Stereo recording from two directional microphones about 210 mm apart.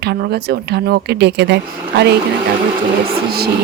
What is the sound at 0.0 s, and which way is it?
A woman's voice, 50° right (ahead or behind).